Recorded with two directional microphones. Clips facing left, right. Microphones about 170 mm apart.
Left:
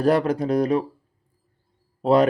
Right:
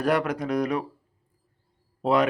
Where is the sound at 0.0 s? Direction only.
30° left (ahead or behind).